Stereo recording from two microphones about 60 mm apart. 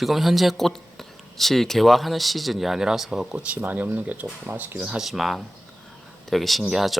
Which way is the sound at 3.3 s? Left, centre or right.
Right.